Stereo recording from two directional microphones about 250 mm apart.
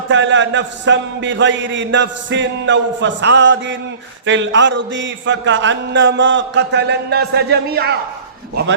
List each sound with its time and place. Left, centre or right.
0.1 s a man's voice: right